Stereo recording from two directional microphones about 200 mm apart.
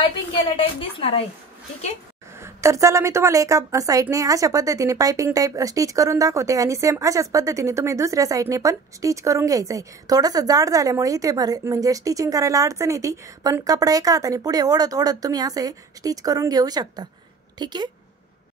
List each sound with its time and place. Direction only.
0.6 s a woman's voice: 25° left (ahead or behind)
2.4 s a woman's voice: 15° right (ahead or behind)